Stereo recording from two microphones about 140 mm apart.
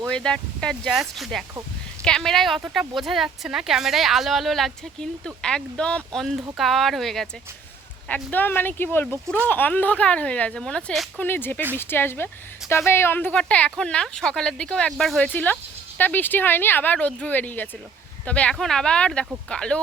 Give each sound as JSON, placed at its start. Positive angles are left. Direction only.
{"t": 0.1, "sound": "a woman's voice", "side_deg": 5}
{"t": 11.2, "sound": "a woman's voice", "side_deg": 15}